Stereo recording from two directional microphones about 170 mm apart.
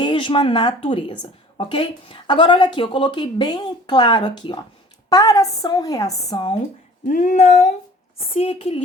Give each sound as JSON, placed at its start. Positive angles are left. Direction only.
{"t": 0.0, "sound": "a woman's voice", "side_deg": 30}
{"t": 7.1, "sound": "a sound", "side_deg": 45}
{"t": 8.4, "sound": "a woman's voice", "side_deg": 35}